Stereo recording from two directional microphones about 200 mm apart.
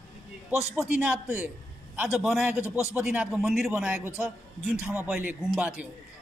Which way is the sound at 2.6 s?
15° left (ahead or behind).